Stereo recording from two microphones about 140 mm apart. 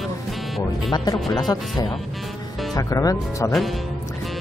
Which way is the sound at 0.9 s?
30° left (ahead or behind).